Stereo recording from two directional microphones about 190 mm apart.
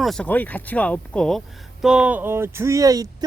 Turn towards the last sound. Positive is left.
turn(degrees=-20)  # may be behind; listen again after turning